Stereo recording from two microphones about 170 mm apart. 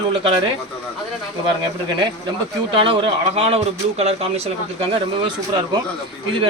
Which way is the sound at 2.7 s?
30° right (ahead or behind).